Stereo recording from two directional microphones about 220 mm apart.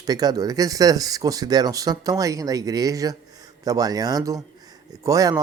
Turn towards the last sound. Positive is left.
turn(degrees=-15)  # may be behind; listen again after turning